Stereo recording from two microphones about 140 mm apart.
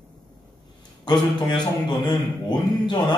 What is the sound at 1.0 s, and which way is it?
Speech, 30° left (ahead or behind).